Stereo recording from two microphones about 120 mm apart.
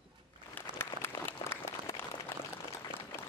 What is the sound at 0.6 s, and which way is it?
Applause, 15° left (ahead or behind).